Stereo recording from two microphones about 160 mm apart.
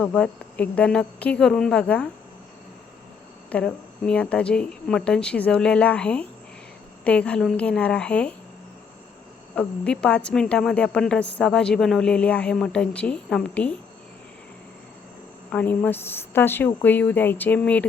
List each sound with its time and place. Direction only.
0.0 s speech: 10° left (ahead or behind)
3.5 s speech: 5° left (ahead or behind)
9.6 s a woman's voice: 5° left (ahead or behind)
15.5 s speech: 10° left (ahead or behind)